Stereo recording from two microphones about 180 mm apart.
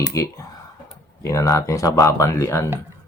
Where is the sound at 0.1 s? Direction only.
20° left (ahead or behind).